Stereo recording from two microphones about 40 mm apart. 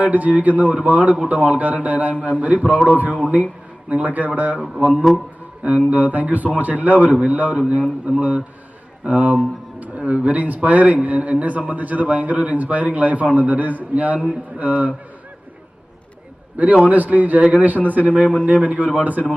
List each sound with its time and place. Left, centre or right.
0.0 s a man's voice: right
16.8 s a man's voice: right